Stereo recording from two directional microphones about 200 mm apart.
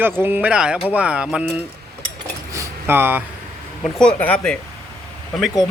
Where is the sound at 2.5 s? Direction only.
15° right (ahead or behind).